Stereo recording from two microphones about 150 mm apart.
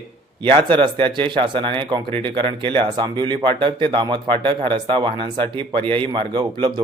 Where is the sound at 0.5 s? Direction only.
35° right (ahead or behind).